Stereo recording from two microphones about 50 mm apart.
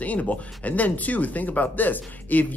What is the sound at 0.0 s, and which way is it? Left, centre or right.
Speech, left.